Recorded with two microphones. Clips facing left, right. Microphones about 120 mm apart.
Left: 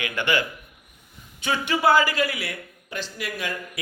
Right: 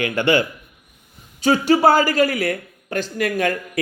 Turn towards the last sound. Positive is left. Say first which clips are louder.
# right 10 dB
turn(degrees=-50)  # may be behind; listen again after turning